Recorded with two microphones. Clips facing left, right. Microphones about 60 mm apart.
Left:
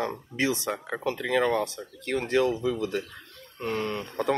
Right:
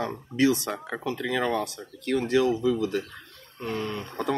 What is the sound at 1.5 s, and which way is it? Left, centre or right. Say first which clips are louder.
Speech: left 1 dB; left.